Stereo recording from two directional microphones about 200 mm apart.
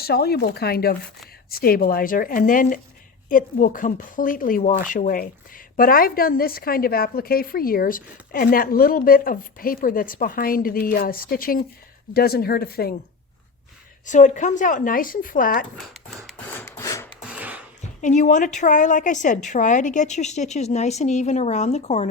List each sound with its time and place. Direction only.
0.0 s speech: 50° left (ahead or behind)
14.0 s a woman's voice: 40° left (ahead or behind)
15.8 s a sound: centre (ahead or behind)
16.6 s filing: 15° left (ahead or behind)
17.2 s a sound: 5° right (ahead or behind)
18.0 s a woman's voice: 40° left (ahead or behind)